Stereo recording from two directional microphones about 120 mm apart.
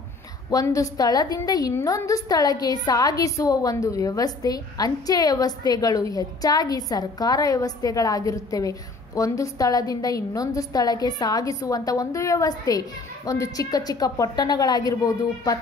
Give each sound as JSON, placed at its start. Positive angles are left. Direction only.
{"t": 0.5, "sound": "a woman's voice", "side_deg": 30}